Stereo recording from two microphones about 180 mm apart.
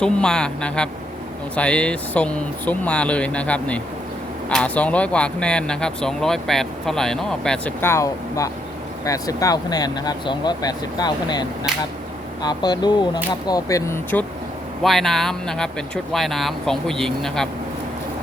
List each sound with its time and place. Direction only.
0.0 s speech: 5° left (ahead or behind)
14.8 s speech: centre (ahead or behind)